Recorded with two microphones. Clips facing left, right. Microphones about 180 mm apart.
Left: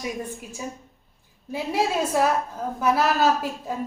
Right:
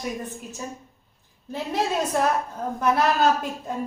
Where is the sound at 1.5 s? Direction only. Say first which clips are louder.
Left 1 dB; 10° left (ahead or behind).